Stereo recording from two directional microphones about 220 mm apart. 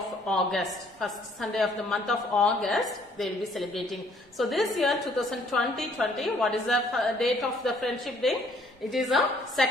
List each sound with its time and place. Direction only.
0.3 s a woman's voice: centre (ahead or behind)